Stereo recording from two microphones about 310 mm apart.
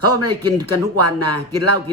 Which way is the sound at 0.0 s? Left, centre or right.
Right.